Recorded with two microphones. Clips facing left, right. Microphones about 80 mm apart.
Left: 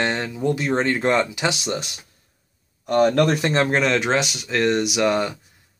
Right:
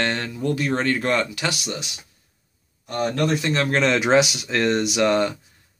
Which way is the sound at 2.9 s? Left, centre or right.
Left.